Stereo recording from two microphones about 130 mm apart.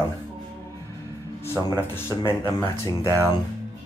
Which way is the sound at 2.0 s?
20° left (ahead or behind).